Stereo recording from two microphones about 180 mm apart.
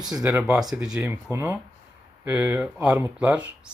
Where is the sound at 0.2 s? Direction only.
10° right (ahead or behind).